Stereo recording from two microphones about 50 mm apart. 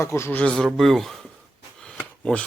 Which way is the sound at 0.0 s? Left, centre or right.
Left.